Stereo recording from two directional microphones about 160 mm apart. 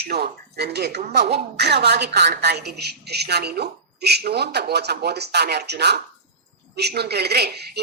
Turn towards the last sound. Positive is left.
turn(degrees=-90)